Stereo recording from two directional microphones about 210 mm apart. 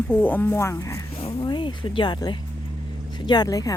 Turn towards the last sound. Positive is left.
turn(degrees=15)  # may be behind; listen again after turning